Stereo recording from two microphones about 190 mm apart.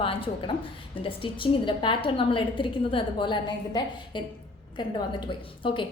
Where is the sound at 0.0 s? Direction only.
30° left (ahead or behind).